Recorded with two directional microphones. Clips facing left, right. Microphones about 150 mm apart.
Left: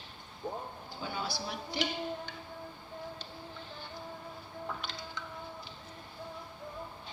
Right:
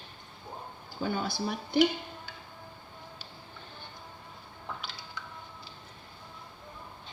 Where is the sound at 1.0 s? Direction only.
50° right (ahead or behind).